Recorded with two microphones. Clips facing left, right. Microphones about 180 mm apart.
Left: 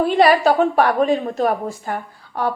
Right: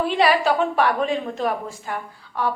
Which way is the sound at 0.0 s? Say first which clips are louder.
Left 5 dB; 45° left (ahead or behind).